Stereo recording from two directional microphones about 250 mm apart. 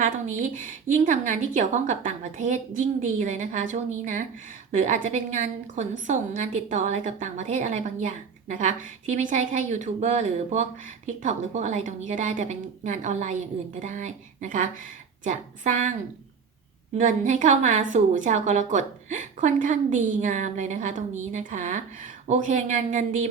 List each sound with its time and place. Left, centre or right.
0.0 s a woman's voice: right
17.0 s a woman's voice: right